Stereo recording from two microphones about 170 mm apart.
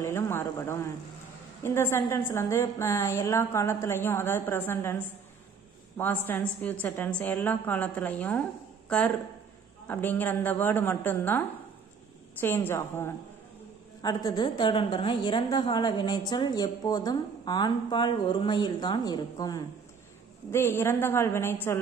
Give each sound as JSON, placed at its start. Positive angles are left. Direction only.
{"t": 0.0, "sound": "a woman's voice", "side_deg": 15}
{"t": 14.0, "sound": "a woman's voice", "side_deg": 25}